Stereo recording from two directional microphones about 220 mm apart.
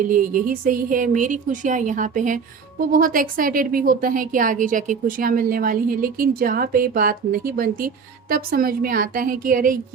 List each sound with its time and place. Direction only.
0.1 s speech: 40° right (ahead or behind)